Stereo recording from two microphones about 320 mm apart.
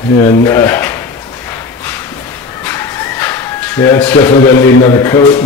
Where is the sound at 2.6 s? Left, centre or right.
Centre.